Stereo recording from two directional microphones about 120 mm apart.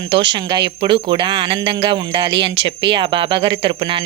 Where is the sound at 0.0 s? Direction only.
40° right (ahead or behind).